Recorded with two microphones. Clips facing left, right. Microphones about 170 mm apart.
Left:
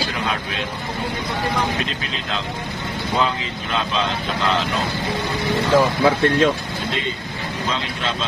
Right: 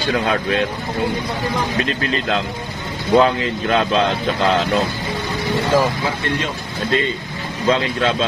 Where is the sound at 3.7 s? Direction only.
55° right (ahead or behind).